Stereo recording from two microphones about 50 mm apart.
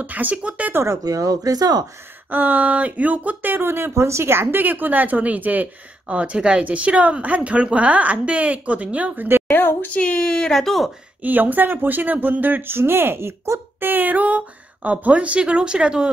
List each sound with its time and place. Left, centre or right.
0.0 s speech: right
2.2 s a woman's voice: right
9.5 s a woman's voice: left
9.8 s speech: left; by 10.9 s centre
11.2 s speech: right
12.6 s a woman's voice: right; by 16.1 s centre